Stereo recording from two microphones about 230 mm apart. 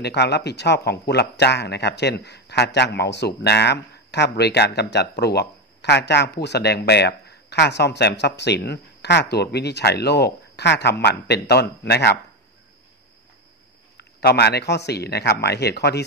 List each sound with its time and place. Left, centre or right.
0.0 s speech: left
13.9 s speech: left